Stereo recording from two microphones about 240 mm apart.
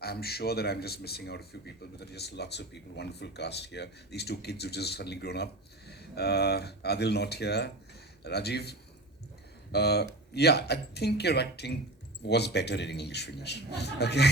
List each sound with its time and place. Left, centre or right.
0.0 s speech: left